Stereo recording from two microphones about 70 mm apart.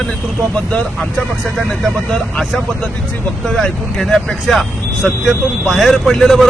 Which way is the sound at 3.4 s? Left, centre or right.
Centre.